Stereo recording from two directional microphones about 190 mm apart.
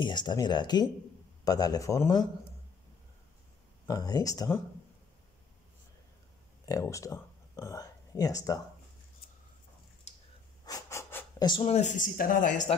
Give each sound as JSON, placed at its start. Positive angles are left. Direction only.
{"t": 0.0, "sound": "speech", "side_deg": 25}
{"t": 3.8, "sound": "speech", "side_deg": 20}
{"t": 6.6, "sound": "speech", "side_deg": 15}
{"t": 10.6, "sound": "pant", "side_deg": 15}
{"t": 11.4, "sound": "speech", "side_deg": 30}